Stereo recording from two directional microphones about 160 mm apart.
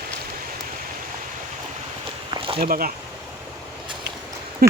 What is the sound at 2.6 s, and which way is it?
Speech, 65° right (ahead or behind).